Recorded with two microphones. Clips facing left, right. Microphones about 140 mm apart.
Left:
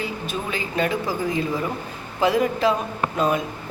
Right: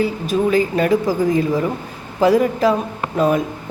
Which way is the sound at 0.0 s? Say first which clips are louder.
Right 10 dB; 40° right (ahead or behind).